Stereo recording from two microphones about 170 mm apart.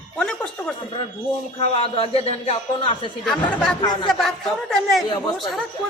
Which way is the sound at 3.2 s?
5° left (ahead or behind).